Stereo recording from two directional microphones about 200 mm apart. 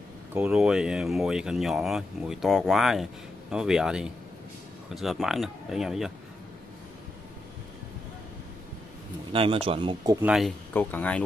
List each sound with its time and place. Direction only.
0.3 s speech: 5° right (ahead or behind)
9.3 s speech: 25° right (ahead or behind)
10.2 s speech: 5° right (ahead or behind)
10.7 s speech: 10° left (ahead or behind)